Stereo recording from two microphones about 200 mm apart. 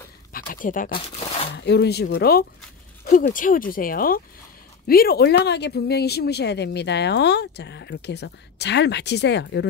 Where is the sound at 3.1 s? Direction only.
40° left (ahead or behind).